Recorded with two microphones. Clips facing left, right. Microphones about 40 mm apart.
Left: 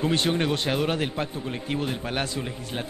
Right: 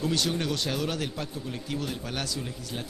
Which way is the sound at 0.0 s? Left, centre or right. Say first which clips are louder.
Left 4 dB; left.